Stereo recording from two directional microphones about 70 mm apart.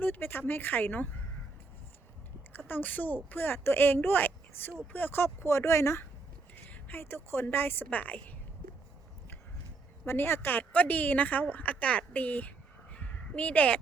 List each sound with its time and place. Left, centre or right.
0.0 s speech: left
2.6 s speech: left
6.7 s a sound: left
7.0 s speech: left
10.1 s speech: left